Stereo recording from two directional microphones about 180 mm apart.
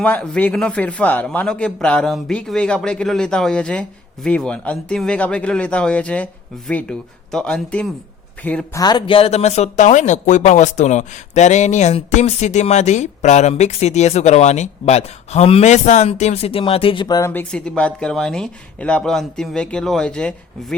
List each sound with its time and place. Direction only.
0.0 s a man's voice: 5° left (ahead or behind)
8.8 s speech: 25° left (ahead or behind); by 20.7 s 5° left (ahead or behind)